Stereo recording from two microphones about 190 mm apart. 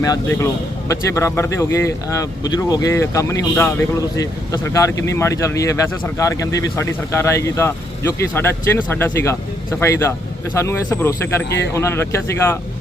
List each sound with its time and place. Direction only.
0.0 s speech: 15° left (ahead or behind)